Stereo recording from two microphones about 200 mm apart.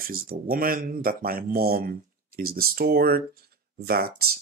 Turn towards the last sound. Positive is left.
turn(degrees=-50)  # may be behind; listen again after turning